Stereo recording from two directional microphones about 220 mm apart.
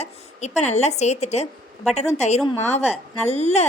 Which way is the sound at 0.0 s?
30° left (ahead or behind).